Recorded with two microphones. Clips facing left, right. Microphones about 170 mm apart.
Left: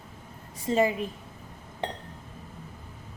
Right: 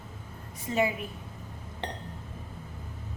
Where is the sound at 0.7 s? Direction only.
25° left (ahead or behind).